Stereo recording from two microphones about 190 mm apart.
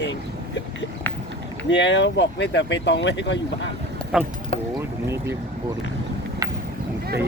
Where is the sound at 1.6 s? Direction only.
70° left (ahead or behind).